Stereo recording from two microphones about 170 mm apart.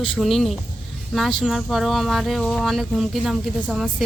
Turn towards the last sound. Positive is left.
turn(degrees=-5)  # may be behind; listen again after turning